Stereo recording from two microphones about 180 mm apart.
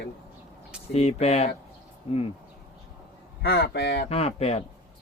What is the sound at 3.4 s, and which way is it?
Speech, 65° left (ahead or behind).